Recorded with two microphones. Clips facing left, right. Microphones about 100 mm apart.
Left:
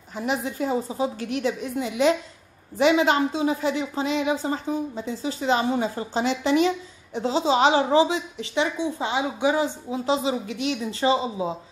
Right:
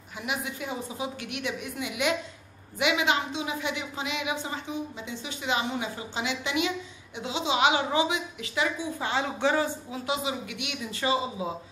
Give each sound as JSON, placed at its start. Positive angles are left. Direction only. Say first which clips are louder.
{"t": 0.1, "sound": "a woman's voice", "louder": "left 6 dB", "side_deg": 35}
{"t": 9.8, "sound": "a woman's voice", "louder": "left 7 dB", "side_deg": 30}